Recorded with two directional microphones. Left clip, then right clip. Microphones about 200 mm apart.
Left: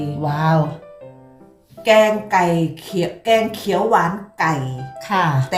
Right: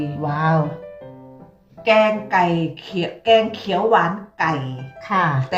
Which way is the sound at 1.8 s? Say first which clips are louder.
Left 2 dB; 20° left (ahead or behind).